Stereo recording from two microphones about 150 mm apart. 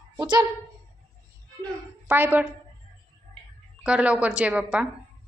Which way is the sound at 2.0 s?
15° right (ahead or behind).